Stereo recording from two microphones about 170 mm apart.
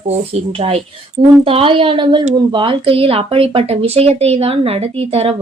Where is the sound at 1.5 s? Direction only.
30° right (ahead or behind).